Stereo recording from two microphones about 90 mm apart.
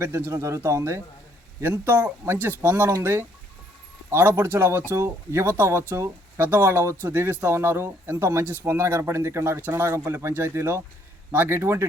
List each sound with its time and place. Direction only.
0.0 s speech: 30° right (ahead or behind)